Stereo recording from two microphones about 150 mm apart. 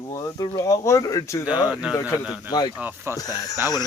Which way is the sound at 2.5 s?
30° left (ahead or behind).